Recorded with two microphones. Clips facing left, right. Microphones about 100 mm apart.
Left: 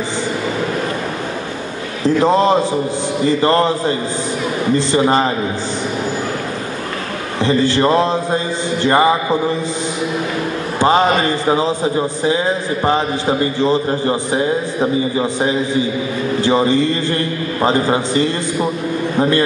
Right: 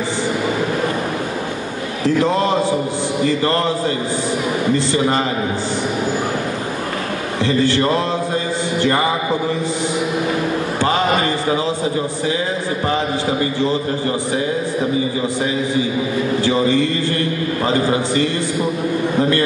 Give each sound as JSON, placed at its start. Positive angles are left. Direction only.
{"t": 2.0, "sound": "a man's voice", "side_deg": 25}
{"t": 4.9, "sound": "a man's voice", "side_deg": 30}
{"t": 7.4, "sound": "a man's voice", "side_deg": 25}
{"t": 10.8, "sound": "a man's voice", "side_deg": 25}
{"t": 12.8, "sound": "a man's voice", "side_deg": 30}
{"t": 16.4, "sound": "a man's voice", "side_deg": 25}